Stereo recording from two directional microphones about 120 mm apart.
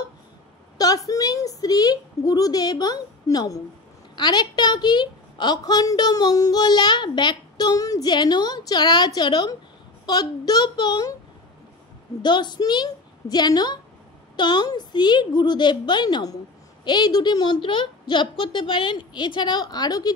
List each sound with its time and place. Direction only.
0.7 s a woman's voice: 30° left (ahead or behind)
12.2 s a woman's voice: 40° left (ahead or behind)